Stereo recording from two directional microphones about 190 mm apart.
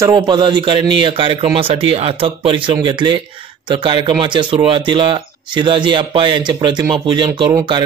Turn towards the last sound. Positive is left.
turn(degrees=-20)  # may be behind; listen again after turning